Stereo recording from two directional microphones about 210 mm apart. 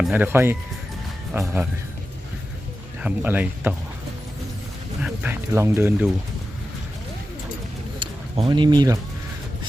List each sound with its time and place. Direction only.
0.0 s speech: 10° right (ahead or behind)
3.0 s speech: 10° right (ahead or behind)
5.0 s speech: 10° right (ahead or behind)
7.9 s a sound: 25° right (ahead or behind)